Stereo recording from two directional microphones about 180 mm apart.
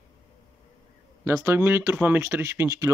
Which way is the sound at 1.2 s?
15° right (ahead or behind).